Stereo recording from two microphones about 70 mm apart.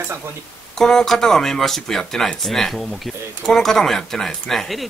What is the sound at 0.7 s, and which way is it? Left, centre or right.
Speech, centre.